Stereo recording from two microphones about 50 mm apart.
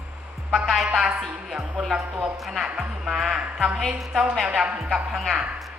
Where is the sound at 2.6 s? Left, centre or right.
Centre.